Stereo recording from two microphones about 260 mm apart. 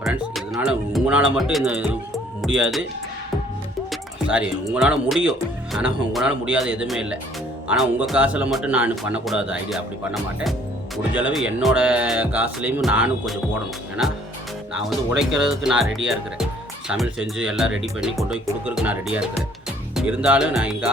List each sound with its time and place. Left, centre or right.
0.0 s speech: centre
4.7 s speech: centre